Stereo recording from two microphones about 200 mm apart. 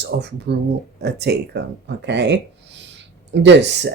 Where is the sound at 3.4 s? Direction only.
60° right (ahead or behind).